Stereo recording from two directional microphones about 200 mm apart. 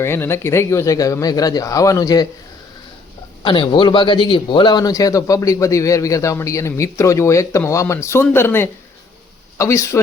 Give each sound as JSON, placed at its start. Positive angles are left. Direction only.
{"t": 0.0, "sound": "a man's voice", "side_deg": 10}
{"t": 3.4, "sound": "a man's voice", "side_deg": 25}